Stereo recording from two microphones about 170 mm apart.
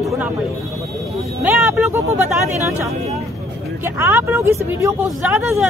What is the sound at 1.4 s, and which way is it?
Speech, 10° right (ahead or behind).